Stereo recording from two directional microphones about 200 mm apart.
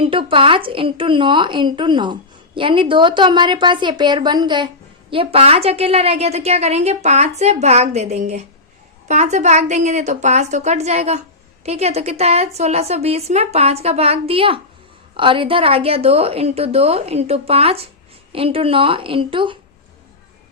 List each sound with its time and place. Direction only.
0.0 s a woman's voice: 25° right (ahead or behind)